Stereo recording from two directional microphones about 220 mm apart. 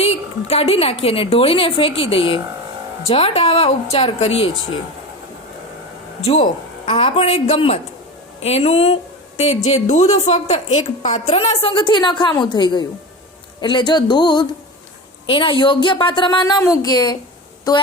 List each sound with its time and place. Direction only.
0.0 s a sound: 30° left (ahead or behind)
1.0 s a woman's voice: 25° left (ahead or behind)
6.2 s a woman's voice: 30° left (ahead or behind)